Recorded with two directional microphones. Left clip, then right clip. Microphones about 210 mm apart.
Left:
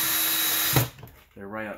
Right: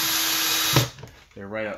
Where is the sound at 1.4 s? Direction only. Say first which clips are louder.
Right 4 dB; 30° right (ahead or behind).